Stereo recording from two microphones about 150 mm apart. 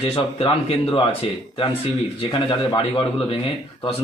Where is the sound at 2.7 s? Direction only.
35° left (ahead or behind).